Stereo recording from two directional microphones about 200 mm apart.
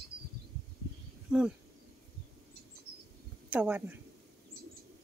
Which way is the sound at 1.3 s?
5° right (ahead or behind).